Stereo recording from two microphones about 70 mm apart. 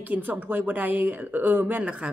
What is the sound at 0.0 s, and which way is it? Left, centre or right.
Speech, right.